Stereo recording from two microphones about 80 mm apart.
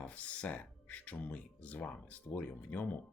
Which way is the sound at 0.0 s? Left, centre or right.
Centre.